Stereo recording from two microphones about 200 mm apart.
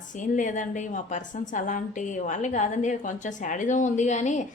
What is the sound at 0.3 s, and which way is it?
A woman's voice, 40° left (ahead or behind).